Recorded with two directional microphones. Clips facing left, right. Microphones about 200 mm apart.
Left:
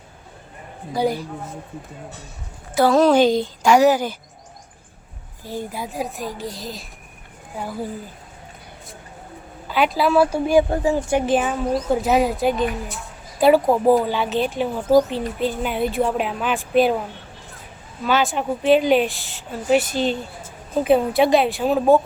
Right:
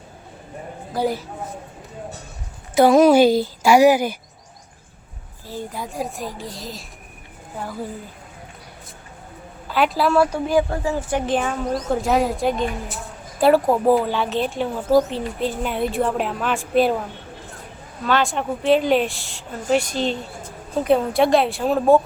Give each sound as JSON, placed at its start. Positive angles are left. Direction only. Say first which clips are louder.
{"t": 2.7, "sound": "a woman's voice", "louder": "right 2 dB", "side_deg": -15}
{"t": 5.5, "sound": "speech", "louder": "left 2 dB", "side_deg": 10}
{"t": 9.7, "sound": "speech", "louder": "left 1 dB", "side_deg": 0}
{"t": 10.3, "sound": "speech", "louder": "left 3 dB", "side_deg": 20}
{"t": 11.3, "sound": "speech", "louder": "left 2 dB", "side_deg": 5}
{"t": 18.0, "sound": "speech", "louder": "even", "side_deg": 5}